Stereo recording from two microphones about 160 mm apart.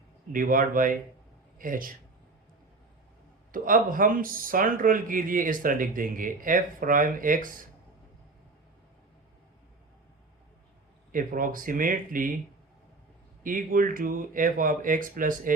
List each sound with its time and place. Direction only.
0.3 s speech: 60° right (ahead or behind)
3.5 s speech: 60° right (ahead or behind)
11.1 s speech: 60° right (ahead or behind)
13.4 s speech: 60° right (ahead or behind)